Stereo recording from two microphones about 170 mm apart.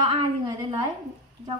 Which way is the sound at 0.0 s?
30° right (ahead or behind).